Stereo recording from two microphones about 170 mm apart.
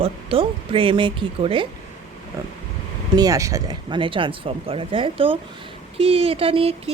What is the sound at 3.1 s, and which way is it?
Speech, 20° right (ahead or behind).